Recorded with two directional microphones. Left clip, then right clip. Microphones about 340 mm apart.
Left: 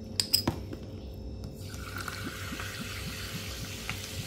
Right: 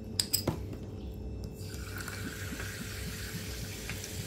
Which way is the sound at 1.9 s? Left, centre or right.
Centre.